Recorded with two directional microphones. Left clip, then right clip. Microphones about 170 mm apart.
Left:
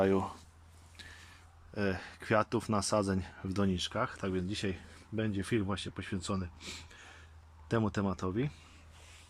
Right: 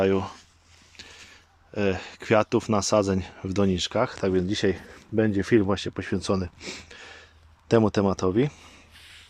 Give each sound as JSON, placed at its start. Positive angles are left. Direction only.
{"t": 0.0, "sound": "speech", "side_deg": -5}
{"t": 0.9, "sound": "speech", "side_deg": -15}